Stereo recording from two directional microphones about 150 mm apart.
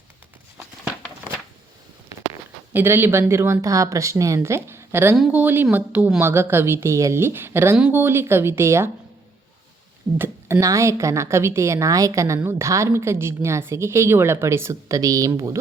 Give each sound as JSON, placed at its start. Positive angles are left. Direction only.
{"t": 2.7, "sound": "a woman's voice", "side_deg": -15}
{"t": 10.2, "sound": "a woman's voice", "side_deg": -15}